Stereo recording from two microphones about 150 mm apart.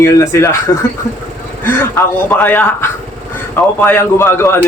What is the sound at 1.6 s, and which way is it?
A man's voice, 15° left (ahead or behind).